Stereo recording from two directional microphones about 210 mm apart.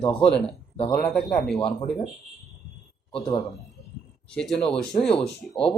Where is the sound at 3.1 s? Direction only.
25° left (ahead or behind).